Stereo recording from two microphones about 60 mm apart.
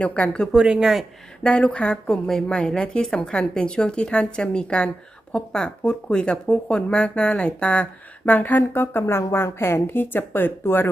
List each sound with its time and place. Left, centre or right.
0.0 s speech: left
0.5 s speech: centre
1.5 s a woman's voice: centre
8.7 s a woman's voice: left